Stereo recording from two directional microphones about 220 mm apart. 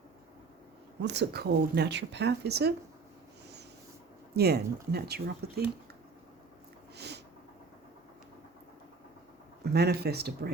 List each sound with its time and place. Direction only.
1.0 s speech: 50° right (ahead or behind)
4.4 s speech: 45° right (ahead or behind)
6.9 s a sound: 50° right (ahead or behind)
9.7 s speech: 45° right (ahead or behind)